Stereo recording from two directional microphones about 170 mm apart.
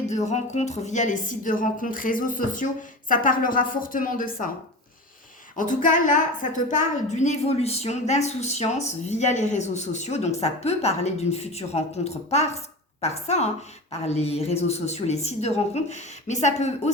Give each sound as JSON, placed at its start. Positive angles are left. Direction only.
{"t": 0.3, "sound": "a woman's voice", "side_deg": 40}
{"t": 5.5, "sound": "a woman's voice", "side_deg": 50}